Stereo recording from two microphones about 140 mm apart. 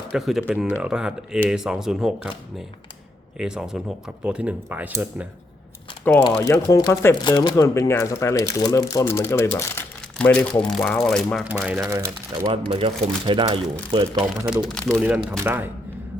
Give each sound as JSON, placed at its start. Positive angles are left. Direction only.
{"t": 0.1, "sound": "speech", "side_deg": 0}
{"t": 6.3, "sound": "speech", "side_deg": 20}
{"t": 7.2, "sound": "speech", "side_deg": 30}
{"t": 11.4, "sound": "speech", "side_deg": -10}
{"t": 11.9, "sound": "speech", "side_deg": -20}
{"t": 12.5, "sound": "speech", "side_deg": -40}
{"t": 14.5, "sound": "speech", "side_deg": 5}
{"t": 15.3, "sound": "speech", "side_deg": -15}